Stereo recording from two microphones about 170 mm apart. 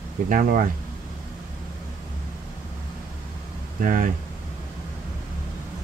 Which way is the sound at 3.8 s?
50° right (ahead or behind).